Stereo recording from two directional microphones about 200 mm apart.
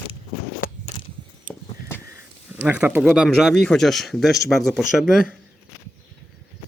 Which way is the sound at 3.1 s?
Centre (ahead or behind).